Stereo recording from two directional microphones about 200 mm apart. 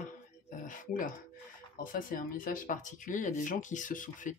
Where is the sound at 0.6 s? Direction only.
40° left (ahead or behind).